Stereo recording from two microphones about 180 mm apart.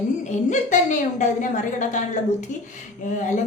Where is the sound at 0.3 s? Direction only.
45° left (ahead or behind).